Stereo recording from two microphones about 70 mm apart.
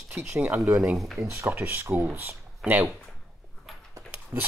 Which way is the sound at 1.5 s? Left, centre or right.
Right.